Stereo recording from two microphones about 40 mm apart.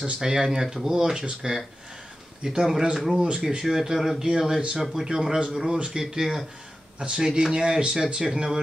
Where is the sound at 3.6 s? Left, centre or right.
Centre.